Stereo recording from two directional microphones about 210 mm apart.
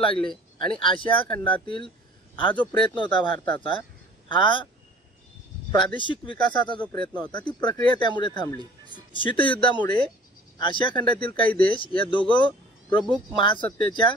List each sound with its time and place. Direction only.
0.0 s a man's voice: 25° left (ahead or behind)
3.3 s speech: 5° left (ahead or behind)
4.3 s speech: 25° left (ahead or behind)
5.9 s speech: 25° left (ahead or behind)
8.5 s speech: 20° right (ahead or behind)
9.1 s speech: 25° left (ahead or behind)